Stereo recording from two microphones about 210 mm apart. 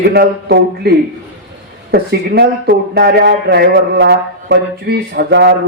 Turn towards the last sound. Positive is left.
turn(degrees=-50)  # may be behind; listen again after turning